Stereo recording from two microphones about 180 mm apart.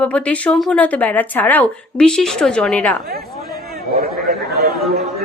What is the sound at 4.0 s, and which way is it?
Chatter, 55° right (ahead or behind).